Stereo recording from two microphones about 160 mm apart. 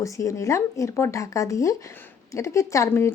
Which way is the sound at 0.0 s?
20° left (ahead or behind).